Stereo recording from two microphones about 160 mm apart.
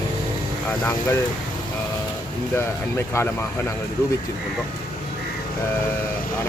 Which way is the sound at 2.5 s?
15° left (ahead or behind).